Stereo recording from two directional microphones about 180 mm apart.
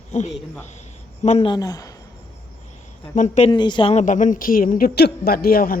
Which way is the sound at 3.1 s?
40° left (ahead or behind).